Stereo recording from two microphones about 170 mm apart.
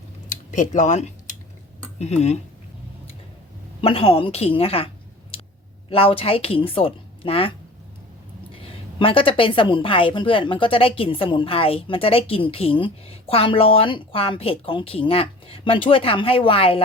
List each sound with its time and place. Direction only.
0.3 s a sound: 45° left (ahead or behind)
2.0 s a woman's voice: 40° left (ahead or behind)
3.8 s a woman's voice: 30° left (ahead or behind)
5.9 s a woman's voice: 35° left (ahead or behind)
8.5 s a woman's voice: 30° left (ahead or behind)